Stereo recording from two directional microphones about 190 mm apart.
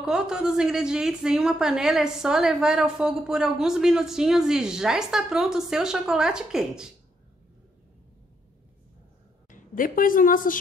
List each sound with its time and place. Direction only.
0.0 s a woman's voice: 5° right (ahead or behind)
9.5 s a woman's voice: 45° left (ahead or behind)